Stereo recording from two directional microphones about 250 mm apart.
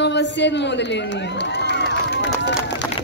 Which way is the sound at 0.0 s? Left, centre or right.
Left.